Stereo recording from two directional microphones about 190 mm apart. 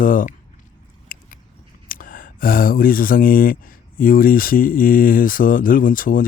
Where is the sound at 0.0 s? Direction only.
45° left (ahead or behind).